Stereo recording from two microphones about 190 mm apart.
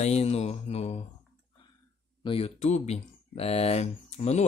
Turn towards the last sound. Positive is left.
turn(degrees=35)  # may be behind; listen again after turning